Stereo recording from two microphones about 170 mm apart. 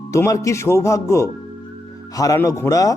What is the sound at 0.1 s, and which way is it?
Speech, 20° left (ahead or behind).